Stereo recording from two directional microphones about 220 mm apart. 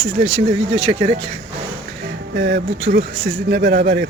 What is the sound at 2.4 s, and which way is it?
Speech, 45° right (ahead or behind).